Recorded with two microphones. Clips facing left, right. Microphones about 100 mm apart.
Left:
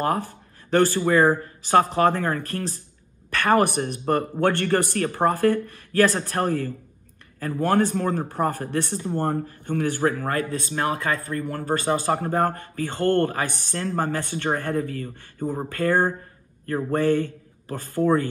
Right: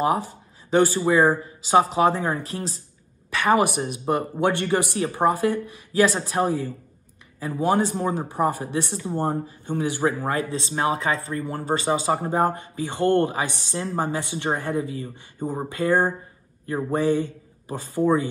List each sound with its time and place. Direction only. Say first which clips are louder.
0.0 s a woman's voice: right 2 dB; 15° right (ahead or behind)